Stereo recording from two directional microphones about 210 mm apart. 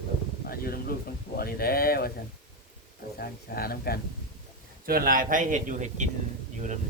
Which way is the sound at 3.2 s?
45° left (ahead or behind).